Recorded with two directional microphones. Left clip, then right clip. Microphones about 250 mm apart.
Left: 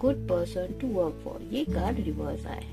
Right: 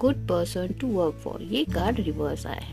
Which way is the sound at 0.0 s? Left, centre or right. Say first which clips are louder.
Right 2 dB; right.